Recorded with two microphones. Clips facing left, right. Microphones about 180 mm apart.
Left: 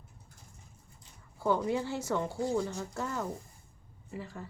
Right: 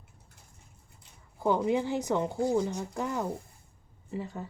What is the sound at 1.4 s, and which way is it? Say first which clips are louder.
Speech: right 3 dB; 20° right (ahead or behind).